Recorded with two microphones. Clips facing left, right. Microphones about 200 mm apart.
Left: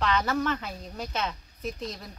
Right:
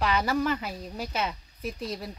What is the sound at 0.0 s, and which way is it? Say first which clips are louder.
Speech: right 1 dB; 10° right (ahead or behind).